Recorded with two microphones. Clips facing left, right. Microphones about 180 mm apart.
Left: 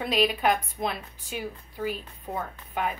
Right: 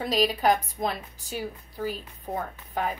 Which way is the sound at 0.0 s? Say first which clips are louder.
Right 1 dB; 40° right (ahead or behind).